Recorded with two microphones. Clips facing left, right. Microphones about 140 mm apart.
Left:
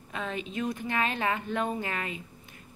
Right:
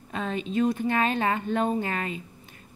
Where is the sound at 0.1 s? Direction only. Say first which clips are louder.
Right 5 dB; 35° right (ahead or behind).